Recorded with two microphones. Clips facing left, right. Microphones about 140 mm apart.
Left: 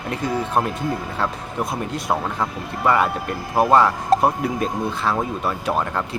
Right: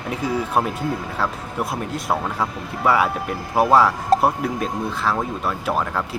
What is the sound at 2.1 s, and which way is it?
Speech, 5° right (ahead or behind).